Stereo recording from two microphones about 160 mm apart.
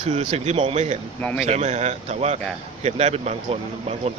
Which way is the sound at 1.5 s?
45° right (ahead or behind).